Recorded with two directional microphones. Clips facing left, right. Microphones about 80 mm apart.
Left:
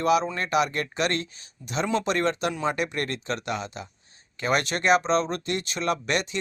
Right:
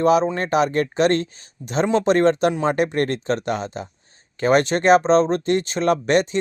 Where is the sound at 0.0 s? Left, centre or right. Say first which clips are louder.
Right 6 dB; right.